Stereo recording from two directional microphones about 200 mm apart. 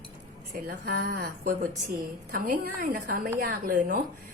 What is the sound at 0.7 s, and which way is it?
A woman's voice, 50° right (ahead or behind).